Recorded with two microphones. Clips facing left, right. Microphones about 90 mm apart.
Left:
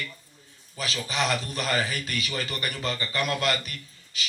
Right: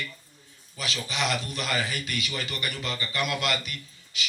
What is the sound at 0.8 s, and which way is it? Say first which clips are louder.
A man's voice: left 2 dB; 40° left (ahead or behind).